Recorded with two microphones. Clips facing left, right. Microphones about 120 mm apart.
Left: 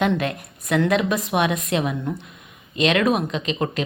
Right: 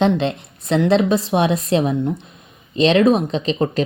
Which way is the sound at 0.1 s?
25° right (ahead or behind).